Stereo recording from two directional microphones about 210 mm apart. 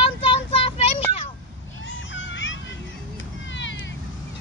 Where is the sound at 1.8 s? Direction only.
65° left (ahead or behind).